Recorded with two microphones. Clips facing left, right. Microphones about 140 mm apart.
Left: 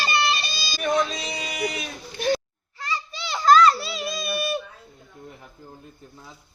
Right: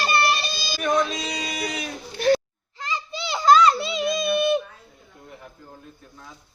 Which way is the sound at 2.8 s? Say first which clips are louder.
Right 1 dB; 20° right (ahead or behind).